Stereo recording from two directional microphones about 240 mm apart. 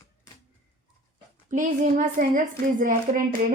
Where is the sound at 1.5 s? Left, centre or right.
Right.